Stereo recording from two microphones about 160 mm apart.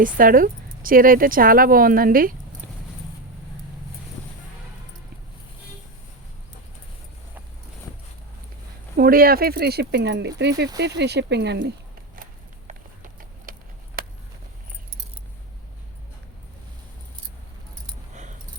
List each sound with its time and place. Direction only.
0.0 s speech: 60° right (ahead or behind)
9.0 s speech: 65° right (ahead or behind); by 11.6 s 90° right
12.1 s a sound: 55° right (ahead or behind)
18.1 s keys jangling: 50° right (ahead or behind)